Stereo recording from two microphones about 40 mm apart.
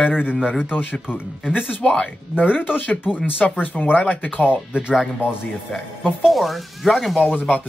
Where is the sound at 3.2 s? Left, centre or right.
Left.